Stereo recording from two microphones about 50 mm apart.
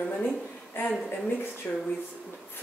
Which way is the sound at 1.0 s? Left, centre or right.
Left.